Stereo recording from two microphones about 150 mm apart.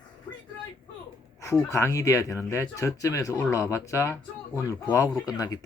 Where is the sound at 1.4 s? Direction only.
20° left (ahead or behind).